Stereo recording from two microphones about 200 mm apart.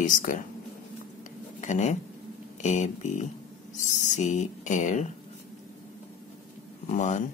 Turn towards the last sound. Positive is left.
turn(degrees=35)  # may be behind; listen again after turning